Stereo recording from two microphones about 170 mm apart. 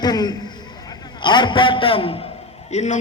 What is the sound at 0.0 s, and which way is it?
A man's voice, 25° left (ahead or behind).